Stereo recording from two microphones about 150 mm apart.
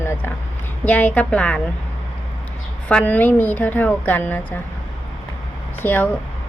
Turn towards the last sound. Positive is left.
turn(degrees=10)  # may be behind; listen again after turning